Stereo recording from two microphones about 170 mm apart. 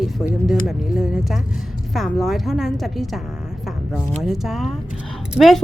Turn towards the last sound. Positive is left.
turn(degrees=0)  # may be behind; listen again after turning